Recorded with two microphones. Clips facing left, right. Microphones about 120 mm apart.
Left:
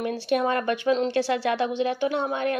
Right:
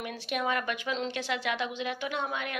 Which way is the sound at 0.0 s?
30° left (ahead or behind).